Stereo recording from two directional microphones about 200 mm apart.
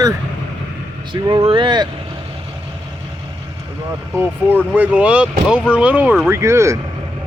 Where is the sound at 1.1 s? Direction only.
25° right (ahead or behind).